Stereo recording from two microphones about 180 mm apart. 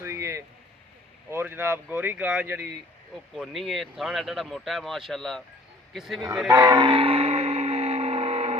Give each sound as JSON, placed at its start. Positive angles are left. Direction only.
{"t": 0.0, "sound": "a sound", "side_deg": -15}
{"t": 1.3, "sound": "speech", "side_deg": -15}
{"t": 6.5, "sound": "music", "side_deg": -20}